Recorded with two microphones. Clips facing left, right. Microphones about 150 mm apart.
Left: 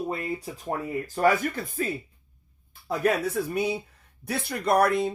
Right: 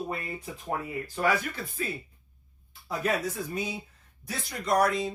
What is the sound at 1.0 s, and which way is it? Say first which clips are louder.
Speech: left 6 dB; 45° left (ahead or behind).